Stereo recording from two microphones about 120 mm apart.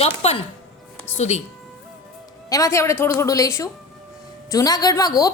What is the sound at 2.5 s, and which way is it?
A woman's voice, 25° left (ahead or behind).